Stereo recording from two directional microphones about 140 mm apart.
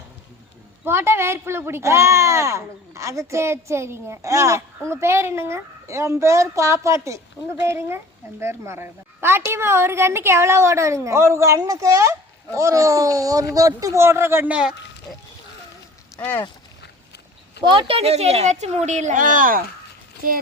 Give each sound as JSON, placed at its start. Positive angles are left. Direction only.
{"t": 0.9, "sound": "a woman's voice", "side_deg": -15}
{"t": 16.1, "sound": "speech", "side_deg": 15}
{"t": 17.6, "sound": "a woman's voice", "side_deg": -35}